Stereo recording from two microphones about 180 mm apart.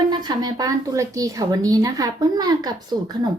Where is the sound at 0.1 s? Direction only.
25° right (ahead or behind).